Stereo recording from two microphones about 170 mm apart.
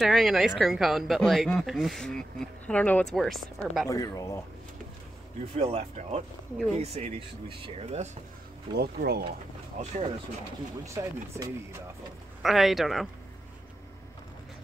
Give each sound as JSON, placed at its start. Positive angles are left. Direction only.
{"t": 0.0, "sound": "speech", "side_deg": 0}
{"t": 3.8, "sound": "speech", "side_deg": 20}
{"t": 5.6, "sound": "speech", "side_deg": -35}
{"t": 8.7, "sound": "speech", "side_deg": -70}
{"t": 9.8, "sound": "speech", "side_deg": -45}
{"t": 10.9, "sound": "speech", "side_deg": -15}
{"t": 12.4, "sound": "speech", "side_deg": 0}